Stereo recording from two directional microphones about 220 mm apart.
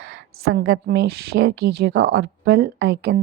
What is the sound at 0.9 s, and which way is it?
Speech, 50° right (ahead or behind).